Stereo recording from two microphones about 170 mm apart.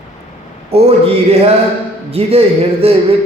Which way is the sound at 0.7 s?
40° right (ahead or behind).